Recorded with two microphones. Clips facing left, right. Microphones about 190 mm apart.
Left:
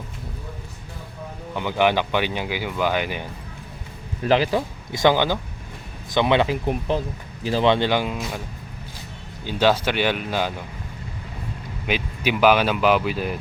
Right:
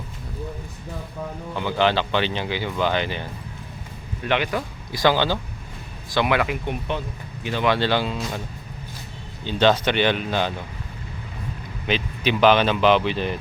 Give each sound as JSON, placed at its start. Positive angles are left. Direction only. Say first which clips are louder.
{"t": 1.5, "sound": "speech", "louder": "left 1 dB", "side_deg": 15}
{"t": 4.3, "sound": "speech", "louder": "left 4 dB", "side_deg": 35}
{"t": 4.9, "sound": "speech", "louder": "left 1 dB", "side_deg": 20}
{"t": 7.7, "sound": "speech", "louder": "right 1 dB", "side_deg": 15}
{"t": 9.4, "sound": "speech", "louder": "right 1 dB", "side_deg": 10}
{"t": 11.9, "sound": "speech", "louder": "right 1 dB", "side_deg": 10}